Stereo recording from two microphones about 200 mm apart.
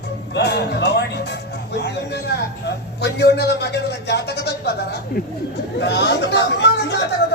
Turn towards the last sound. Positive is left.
turn(degrees=60)  # may be behind; listen again after turning